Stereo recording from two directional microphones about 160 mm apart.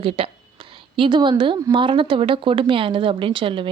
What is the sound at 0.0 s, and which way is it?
Speech, 35° right (ahead or behind).